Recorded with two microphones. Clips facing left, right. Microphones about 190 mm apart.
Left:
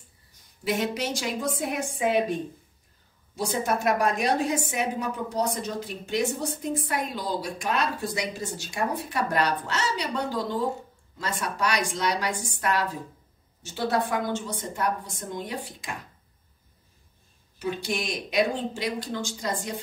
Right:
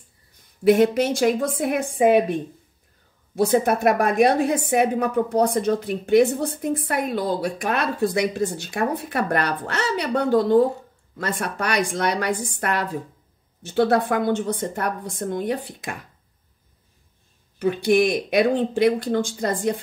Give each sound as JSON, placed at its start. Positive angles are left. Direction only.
{"t": 0.7, "sound": "a woman's voice", "side_deg": -55}
{"t": 3.3, "sound": "a woman's voice", "side_deg": -60}
{"t": 17.6, "sound": "a woman's voice", "side_deg": -55}